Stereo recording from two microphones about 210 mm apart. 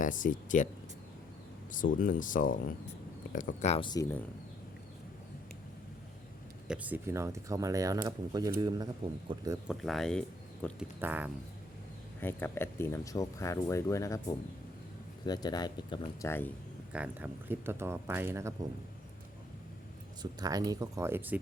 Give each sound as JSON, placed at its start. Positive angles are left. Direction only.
{"t": 0.0, "sound": "speech", "side_deg": 40}
{"t": 1.7, "sound": "speech", "side_deg": 40}
{"t": 6.7, "sound": "speech", "side_deg": -10}
{"t": 9.6, "sound": "speech", "side_deg": 0}
{"t": 11.0, "sound": "speech", "side_deg": -10}
{"t": 12.2, "sound": "speech", "side_deg": 10}
{"t": 16.9, "sound": "speech", "side_deg": -5}
{"t": 20.4, "sound": "speech", "side_deg": -20}